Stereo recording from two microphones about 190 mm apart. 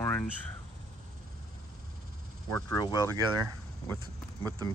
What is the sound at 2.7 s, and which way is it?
Speech, 20° left (ahead or behind).